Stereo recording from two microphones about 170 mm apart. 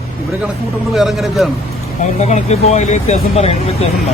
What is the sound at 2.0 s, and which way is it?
Speech, 45° left (ahead or behind).